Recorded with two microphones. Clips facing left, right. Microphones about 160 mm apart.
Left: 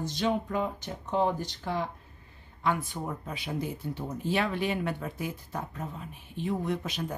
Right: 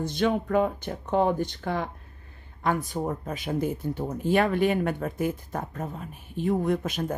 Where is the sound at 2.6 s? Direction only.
40° right (ahead or behind).